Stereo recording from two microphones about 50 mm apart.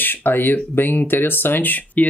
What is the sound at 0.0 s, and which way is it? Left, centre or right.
Speech, left.